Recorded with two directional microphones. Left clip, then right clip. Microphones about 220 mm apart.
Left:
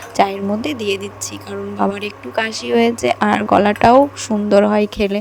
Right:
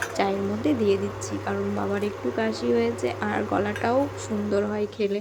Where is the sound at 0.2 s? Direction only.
40° left (ahead or behind).